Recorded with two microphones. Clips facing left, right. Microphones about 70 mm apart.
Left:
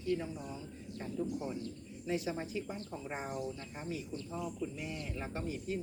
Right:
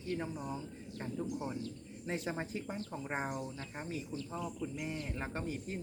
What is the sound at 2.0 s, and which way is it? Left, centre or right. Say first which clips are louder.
Speech: left 2 dB; right.